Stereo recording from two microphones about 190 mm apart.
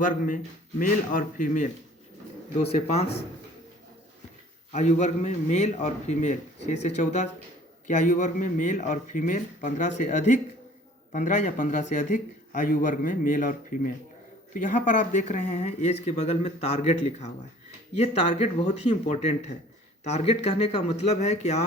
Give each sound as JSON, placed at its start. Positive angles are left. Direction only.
{"t": 0.8, "sound": "speech", "side_deg": 45}
{"t": 4.7, "sound": "speech", "side_deg": 40}